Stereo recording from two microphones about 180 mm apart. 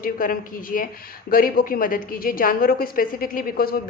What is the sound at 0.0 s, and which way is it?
A woman's voice, 50° left (ahead or behind).